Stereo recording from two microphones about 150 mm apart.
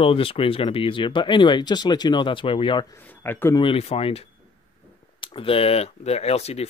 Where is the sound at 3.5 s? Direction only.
40° left (ahead or behind).